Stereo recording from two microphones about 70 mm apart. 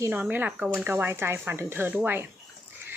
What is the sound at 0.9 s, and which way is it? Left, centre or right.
A woman's voice, right.